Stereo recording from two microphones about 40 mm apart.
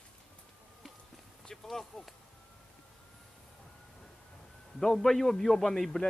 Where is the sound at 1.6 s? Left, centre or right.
Centre.